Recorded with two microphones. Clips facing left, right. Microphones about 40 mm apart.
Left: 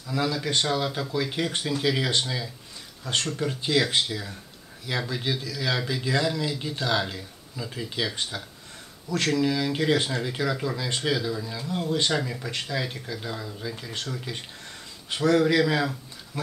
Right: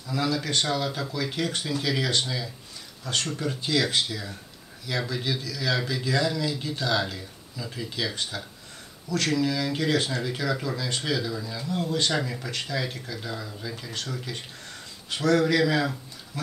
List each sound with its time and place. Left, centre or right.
0.0 s speech: centre
3.0 s speech: left
9.4 s speech: centre
11.6 s speech: centre
12.1 s speech: centre